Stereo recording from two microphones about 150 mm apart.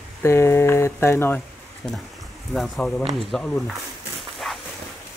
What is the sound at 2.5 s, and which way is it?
Speech, centre (ahead or behind).